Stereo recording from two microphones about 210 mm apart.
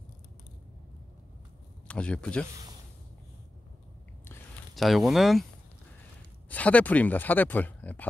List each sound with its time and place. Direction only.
1.9 s speech: 5° left (ahead or behind)
4.7 s speech: centre (ahead or behind)
6.5 s speech: 5° left (ahead or behind)